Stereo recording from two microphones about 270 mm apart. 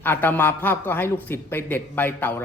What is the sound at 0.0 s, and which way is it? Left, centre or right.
Speech, centre.